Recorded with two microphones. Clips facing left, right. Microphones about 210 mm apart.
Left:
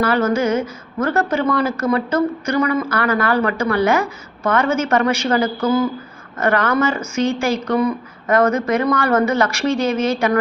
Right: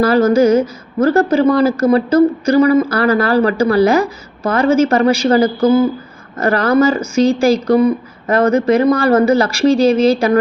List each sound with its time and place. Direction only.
0.0 s a woman's voice: 35° right (ahead or behind)